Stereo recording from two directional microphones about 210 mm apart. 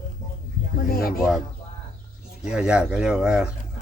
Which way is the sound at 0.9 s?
45° left (ahead or behind).